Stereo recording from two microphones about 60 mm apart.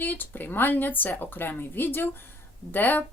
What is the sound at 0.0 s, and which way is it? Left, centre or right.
Speech, left.